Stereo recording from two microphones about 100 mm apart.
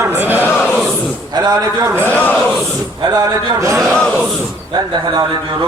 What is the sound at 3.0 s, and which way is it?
Speech, 40° right (ahead or behind).